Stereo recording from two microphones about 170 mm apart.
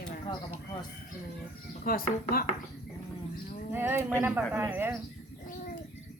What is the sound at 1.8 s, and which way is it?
Speech, 60° left (ahead or behind).